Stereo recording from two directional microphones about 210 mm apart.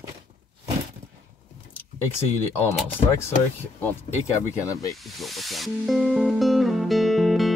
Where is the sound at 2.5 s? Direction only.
10° left (ahead or behind).